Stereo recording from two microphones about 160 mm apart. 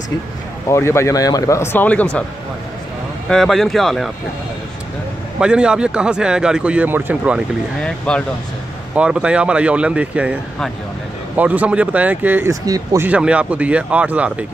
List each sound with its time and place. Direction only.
0.7 s speech: 15° left (ahead or behind)
3.3 s speech: centre (ahead or behind)
5.4 s speech: 5° right (ahead or behind)
8.1 s speech: 5° left (ahead or behind)
8.9 s speech: 5° right (ahead or behind)
11.3 s speech: 10° right (ahead or behind)
13.0 s speech: 10° right (ahead or behind)